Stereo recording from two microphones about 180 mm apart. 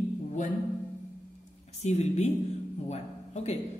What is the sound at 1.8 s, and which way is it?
Speech, 40° left (ahead or behind).